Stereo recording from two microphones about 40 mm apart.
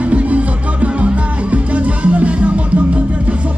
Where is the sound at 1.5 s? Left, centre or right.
Right.